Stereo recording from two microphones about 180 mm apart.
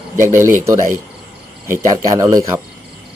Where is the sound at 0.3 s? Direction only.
15° right (ahead or behind).